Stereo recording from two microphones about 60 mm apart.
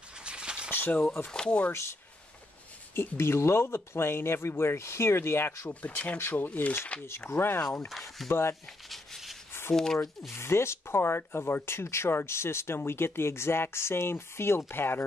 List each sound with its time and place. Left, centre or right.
0.2 s a sound: centre
0.7 s speech: left
1.3 s speech: centre
1.7 s speech: left
5.7 s speech: left
7.1 s speech: left
8.8 s a sound: centre
9.5 s a sound: left
10.3 s speech: left